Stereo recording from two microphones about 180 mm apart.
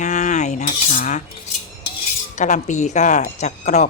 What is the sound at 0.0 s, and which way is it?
Cutlery, 40° left (ahead or behind).